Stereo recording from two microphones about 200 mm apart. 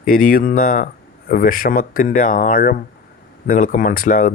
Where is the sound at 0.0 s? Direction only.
40° left (ahead or behind).